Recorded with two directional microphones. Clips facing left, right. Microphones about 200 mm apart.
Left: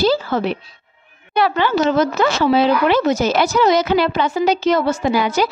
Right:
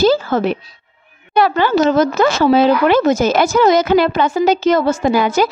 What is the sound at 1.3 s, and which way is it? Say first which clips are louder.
Speech: right 3 dB; 45° right (ahead or behind).